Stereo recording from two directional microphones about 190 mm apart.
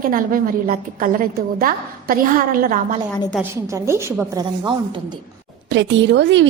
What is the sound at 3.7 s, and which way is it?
Speech, 15° right (ahead or behind).